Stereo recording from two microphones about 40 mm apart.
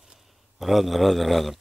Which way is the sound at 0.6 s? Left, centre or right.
Centre.